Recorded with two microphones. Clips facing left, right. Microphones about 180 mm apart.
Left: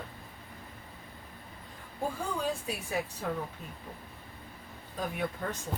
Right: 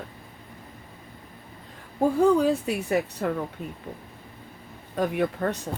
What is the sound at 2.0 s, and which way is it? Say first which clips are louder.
A woman's voice: right 14 dB; 70° right (ahead or behind).